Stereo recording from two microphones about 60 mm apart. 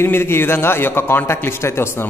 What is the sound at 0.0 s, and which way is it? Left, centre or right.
A man's voice, left.